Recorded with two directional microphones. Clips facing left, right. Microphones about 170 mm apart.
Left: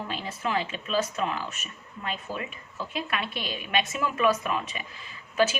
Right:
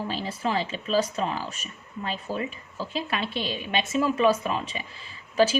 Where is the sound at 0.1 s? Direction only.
35° right (ahead or behind).